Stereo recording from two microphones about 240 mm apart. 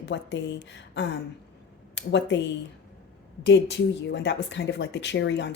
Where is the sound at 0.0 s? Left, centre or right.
Left.